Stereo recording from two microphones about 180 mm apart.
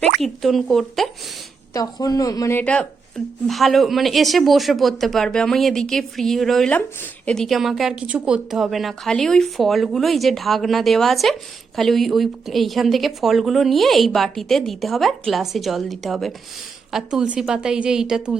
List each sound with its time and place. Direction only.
0.2 s speech: centre (ahead or behind)
1.7 s speech: 20° left (ahead or behind); by 18.3 s 5° right (ahead or behind)